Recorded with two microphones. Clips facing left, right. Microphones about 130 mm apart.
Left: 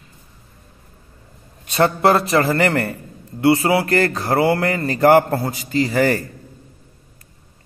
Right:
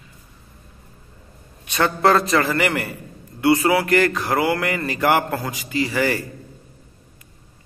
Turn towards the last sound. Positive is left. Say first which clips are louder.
# left 4 dB
turn(degrees=40)  # may be behind; listen again after turning